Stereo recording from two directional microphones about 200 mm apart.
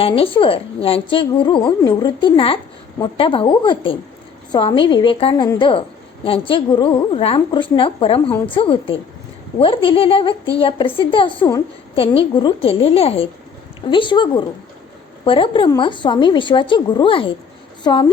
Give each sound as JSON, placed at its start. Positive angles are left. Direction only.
{"t": 0.0, "sound": "a woman's voice", "side_deg": 25}